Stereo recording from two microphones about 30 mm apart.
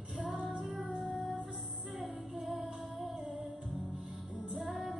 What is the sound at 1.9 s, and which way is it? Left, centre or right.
Music, centre.